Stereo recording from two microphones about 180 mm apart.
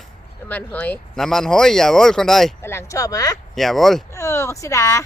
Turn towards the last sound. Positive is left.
turn(degrees=15)  # may be behind; listen again after turning